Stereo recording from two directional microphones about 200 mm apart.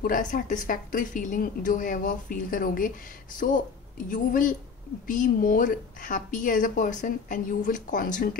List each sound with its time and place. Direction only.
0.0 s a woman's voice: 40° left (ahead or behind)